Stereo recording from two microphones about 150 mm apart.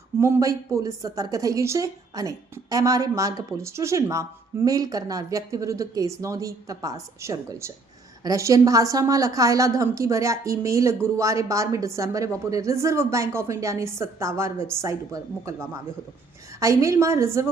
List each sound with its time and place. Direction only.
0.2 s a woman's voice: 20° right (ahead or behind)